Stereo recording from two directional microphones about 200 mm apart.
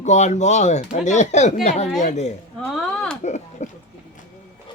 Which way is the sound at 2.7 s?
5° left (ahead or behind).